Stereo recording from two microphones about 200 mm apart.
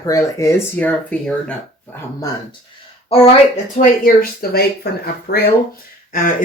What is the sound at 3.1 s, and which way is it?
Speech, 35° left (ahead or behind).